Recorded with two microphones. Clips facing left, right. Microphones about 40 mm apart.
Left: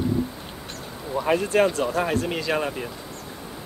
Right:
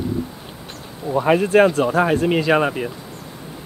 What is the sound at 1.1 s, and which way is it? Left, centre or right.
Speech, right.